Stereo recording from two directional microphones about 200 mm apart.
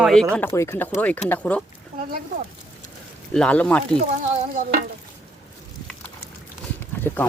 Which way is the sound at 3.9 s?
35° right (ahead or behind).